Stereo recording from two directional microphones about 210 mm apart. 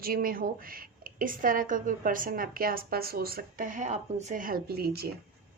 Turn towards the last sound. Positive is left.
turn(degrees=-50)  # may be behind; listen again after turning